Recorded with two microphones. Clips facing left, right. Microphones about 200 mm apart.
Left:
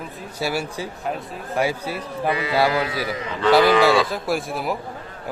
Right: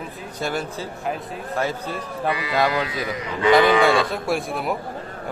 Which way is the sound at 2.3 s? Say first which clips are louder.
Left 4 dB; 25° left (ahead or behind).